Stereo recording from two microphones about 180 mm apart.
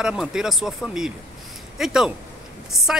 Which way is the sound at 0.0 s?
5° right (ahead or behind).